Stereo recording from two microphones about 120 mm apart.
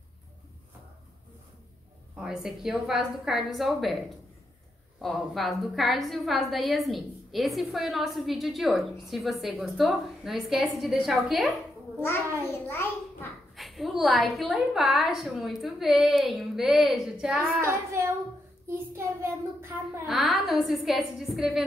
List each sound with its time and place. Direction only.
2.1 s a woman's voice: 5° right (ahead or behind)
5.0 s a woman's voice: centre (ahead or behind)
12.4 s a child's voice: 20° left (ahead or behind)
13.6 s a woman's voice: centre (ahead or behind)
17.4 s child singing: 20° right (ahead or behind)
20.1 s a woman's voice: centre (ahead or behind)